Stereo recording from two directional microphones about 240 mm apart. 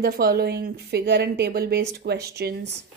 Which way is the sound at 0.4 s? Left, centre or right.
Right.